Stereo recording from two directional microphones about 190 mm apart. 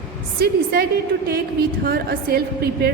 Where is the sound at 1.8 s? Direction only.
50° right (ahead or behind).